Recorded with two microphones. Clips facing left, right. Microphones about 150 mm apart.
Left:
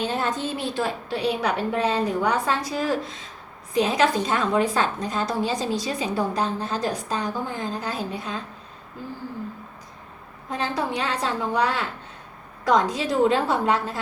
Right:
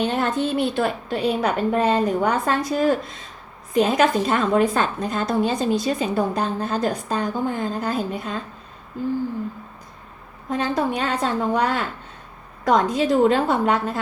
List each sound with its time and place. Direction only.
0.0 s a woman's voice: 60° right (ahead or behind)
10.6 s a woman's voice: 50° right (ahead or behind)